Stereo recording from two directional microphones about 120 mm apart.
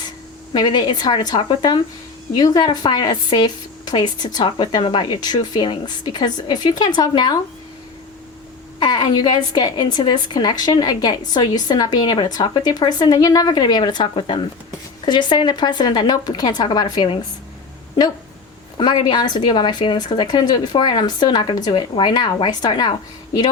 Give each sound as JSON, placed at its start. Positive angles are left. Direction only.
{"t": 0.5, "sound": "a woman's voice", "side_deg": 35}
{"t": 8.8, "sound": "a woman's voice", "side_deg": 35}
{"t": 18.8, "sound": "a woman's voice", "side_deg": 40}